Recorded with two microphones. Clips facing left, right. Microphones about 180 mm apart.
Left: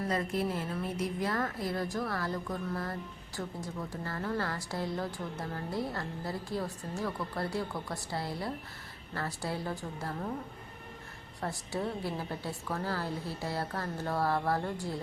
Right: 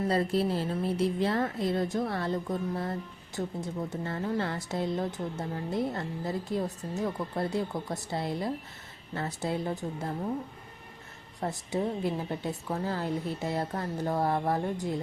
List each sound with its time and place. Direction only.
0.1 s speech: 30° right (ahead or behind)
11.3 s speech: 20° right (ahead or behind)